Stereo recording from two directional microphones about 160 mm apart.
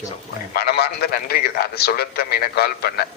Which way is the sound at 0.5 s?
85° left.